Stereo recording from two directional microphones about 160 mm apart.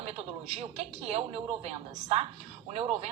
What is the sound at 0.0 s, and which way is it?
A woman's voice, 40° right (ahead or behind).